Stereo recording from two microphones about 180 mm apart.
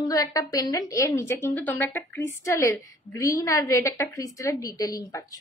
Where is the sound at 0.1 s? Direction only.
20° left (ahead or behind).